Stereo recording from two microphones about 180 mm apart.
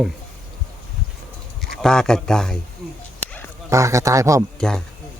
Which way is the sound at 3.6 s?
15° right (ahead or behind).